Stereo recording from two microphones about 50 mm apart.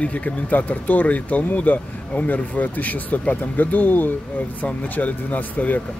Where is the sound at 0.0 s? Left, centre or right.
Left.